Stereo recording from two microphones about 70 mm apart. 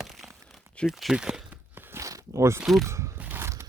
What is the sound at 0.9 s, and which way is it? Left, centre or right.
Speech, centre.